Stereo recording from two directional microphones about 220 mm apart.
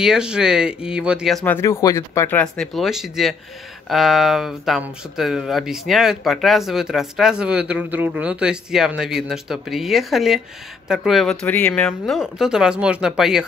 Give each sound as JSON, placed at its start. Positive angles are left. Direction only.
{"t": 0.0, "sound": "speech", "side_deg": -5}